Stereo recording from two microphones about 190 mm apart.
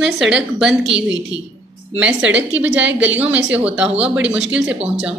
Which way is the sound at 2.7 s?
75° right (ahead or behind).